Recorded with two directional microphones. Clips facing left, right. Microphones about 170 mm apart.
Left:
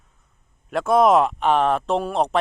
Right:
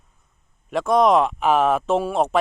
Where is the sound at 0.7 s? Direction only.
Centre (ahead or behind).